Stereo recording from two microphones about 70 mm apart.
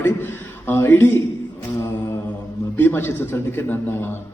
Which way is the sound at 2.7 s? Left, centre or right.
Left.